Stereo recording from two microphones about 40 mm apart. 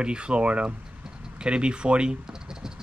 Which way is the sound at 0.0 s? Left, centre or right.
Right.